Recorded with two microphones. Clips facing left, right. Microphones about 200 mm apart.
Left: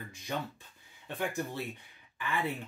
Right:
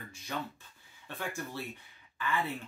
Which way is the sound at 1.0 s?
20° left (ahead or behind).